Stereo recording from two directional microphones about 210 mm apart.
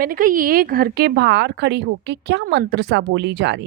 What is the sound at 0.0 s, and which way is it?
A woman's voice, 40° right (ahead or behind).